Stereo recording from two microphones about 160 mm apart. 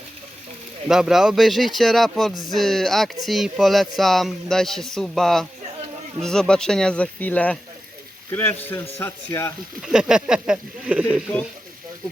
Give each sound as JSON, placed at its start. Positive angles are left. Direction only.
{"t": 0.9, "sound": "a man's voice", "side_deg": -5}
{"t": 9.8, "sound": "a man's voice", "side_deg": -5}